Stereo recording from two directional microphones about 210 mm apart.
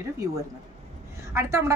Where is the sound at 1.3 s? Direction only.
15° right (ahead or behind).